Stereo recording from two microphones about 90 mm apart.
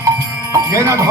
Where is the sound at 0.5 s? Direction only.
35° right (ahead or behind).